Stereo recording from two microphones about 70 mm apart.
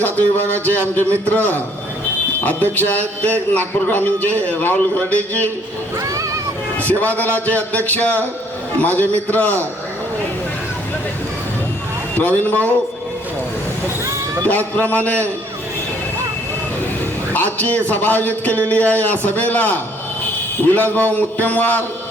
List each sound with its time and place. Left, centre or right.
0.0 s speech: left
6.0 s a sound: right
6.7 s speech: left
12.1 s speech: left
14.8 s speech: left
17.3 s speech: left
20.7 s speech: left